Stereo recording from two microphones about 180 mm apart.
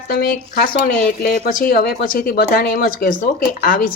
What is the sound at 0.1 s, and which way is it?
Speech, 55° left (ahead or behind).